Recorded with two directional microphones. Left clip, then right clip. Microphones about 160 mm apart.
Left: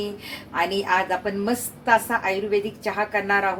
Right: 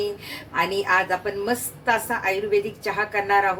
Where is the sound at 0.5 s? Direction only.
30° left (ahead or behind).